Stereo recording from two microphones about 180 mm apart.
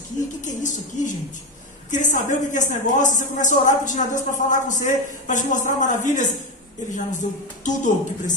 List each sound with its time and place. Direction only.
0.4 s speech: 45° left (ahead or behind)